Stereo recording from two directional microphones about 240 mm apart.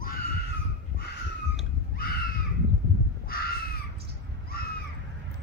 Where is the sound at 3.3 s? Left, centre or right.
Left.